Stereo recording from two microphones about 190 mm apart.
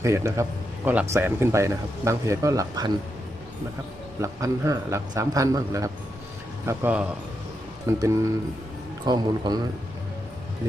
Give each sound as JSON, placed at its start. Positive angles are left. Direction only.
{"t": 0.0, "sound": "speech", "side_deg": -15}
{"t": 4.2, "sound": "a man's voice", "side_deg": -15}